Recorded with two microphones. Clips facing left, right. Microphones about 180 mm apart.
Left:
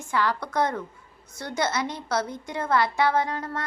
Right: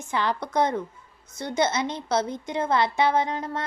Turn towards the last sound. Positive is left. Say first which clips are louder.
# right 1 dB
turn(degrees=-20)  # may be behind; listen again after turning